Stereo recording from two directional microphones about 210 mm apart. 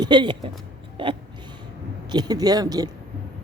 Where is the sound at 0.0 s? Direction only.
20° right (ahead or behind).